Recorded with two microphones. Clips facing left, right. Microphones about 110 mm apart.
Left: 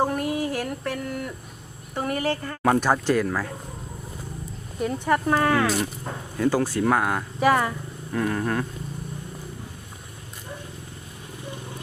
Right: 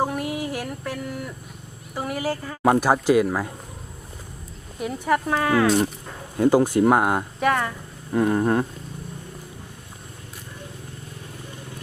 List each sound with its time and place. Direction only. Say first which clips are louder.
0.0 s a sound: left 1 dB; 5° right (ahead or behind)
2.0 s speech: left 1 dB; 5° right (ahead or behind)
4.8 s speech: even; 5° right (ahead or behind)
6.3 s speech: right 5 dB; 20° right (ahead or behind)
7.3 s speech: left 5 dB; 5° left (ahead or behind)
8.1 s speech: right 5 dB; 25° right (ahead or behind)